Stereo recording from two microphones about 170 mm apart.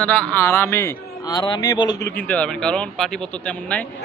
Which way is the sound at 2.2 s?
10° left (ahead or behind).